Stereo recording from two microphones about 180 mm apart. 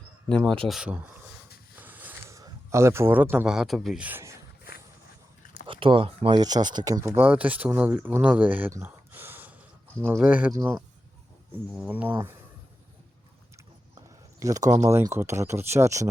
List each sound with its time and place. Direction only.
0.3 s speech: 5° left (ahead or behind)
0.7 s speech: 5° right (ahead or behind)
1.7 s a sound: 10° right (ahead or behind)
5.6 s speech: 30° right (ahead or behind); by 12.4 s 15° right (ahead or behind)
13.9 s a sound: 20° right (ahead or behind)
14.7 s speech: 20° right (ahead or behind)